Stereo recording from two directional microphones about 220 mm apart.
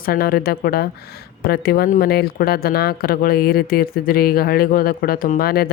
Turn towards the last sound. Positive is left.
turn(degrees=45)  # may be behind; listen again after turning